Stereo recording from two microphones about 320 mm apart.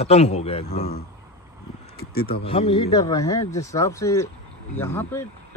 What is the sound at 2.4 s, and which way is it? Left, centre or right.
Speech, centre.